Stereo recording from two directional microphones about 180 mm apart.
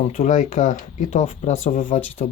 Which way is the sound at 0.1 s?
40° left (ahead or behind).